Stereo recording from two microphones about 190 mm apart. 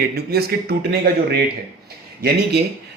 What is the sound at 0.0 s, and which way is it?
A man's voice, 55° right (ahead or behind).